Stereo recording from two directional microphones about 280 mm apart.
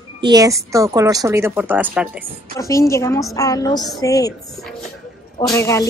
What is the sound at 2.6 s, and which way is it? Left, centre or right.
Speech, centre.